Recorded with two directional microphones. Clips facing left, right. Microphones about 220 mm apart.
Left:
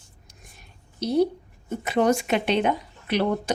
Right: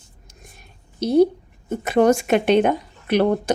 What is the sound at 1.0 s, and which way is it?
A woman's voice, 50° right (ahead or behind).